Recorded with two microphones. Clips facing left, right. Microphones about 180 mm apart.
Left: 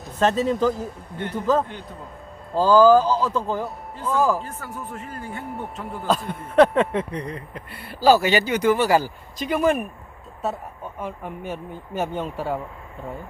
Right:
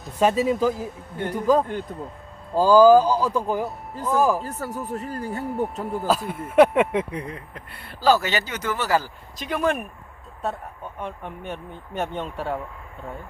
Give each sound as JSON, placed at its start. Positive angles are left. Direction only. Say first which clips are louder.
{"t": 0.0, "sound": "speech", "louder": "right 1 dB", "side_deg": -10}
{"t": 4.4, "sound": "speech", "louder": "right 4 dB", "side_deg": -40}
{"t": 6.1, "sound": "speech", "louder": "left 2 dB", "side_deg": -5}